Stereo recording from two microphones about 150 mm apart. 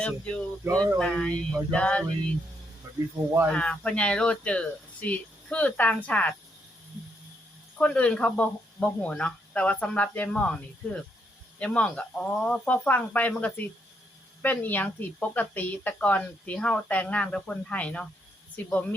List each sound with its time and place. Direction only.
0.0 s speech: 5° left (ahead or behind)
2.8 s cricket: 15° right (ahead or behind)
3.5 s speech: 5° left (ahead or behind)
7.8 s speech: 10° left (ahead or behind)